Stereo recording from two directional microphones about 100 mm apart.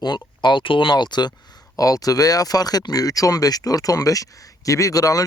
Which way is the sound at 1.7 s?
35° left (ahead or behind).